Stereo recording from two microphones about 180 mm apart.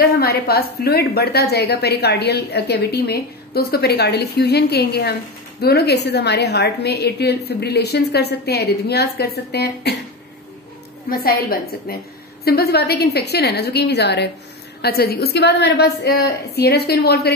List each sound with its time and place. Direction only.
0.0 s a woman's voice: 60° left (ahead or behind)
11.1 s a woman's voice: 55° left (ahead or behind)